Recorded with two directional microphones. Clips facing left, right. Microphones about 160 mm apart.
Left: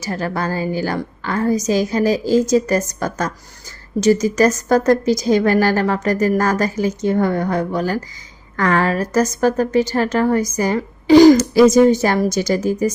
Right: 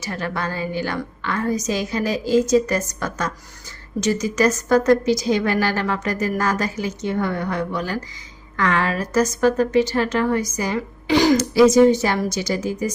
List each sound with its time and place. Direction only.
0.0 s a woman's voice: 35° left (ahead or behind)